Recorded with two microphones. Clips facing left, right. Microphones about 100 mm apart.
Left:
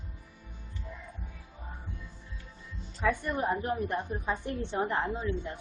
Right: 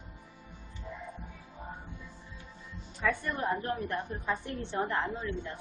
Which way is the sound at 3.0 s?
15° left (ahead or behind).